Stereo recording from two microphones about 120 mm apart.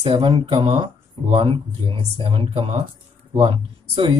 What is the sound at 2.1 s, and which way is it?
Speech, 50° right (ahead or behind).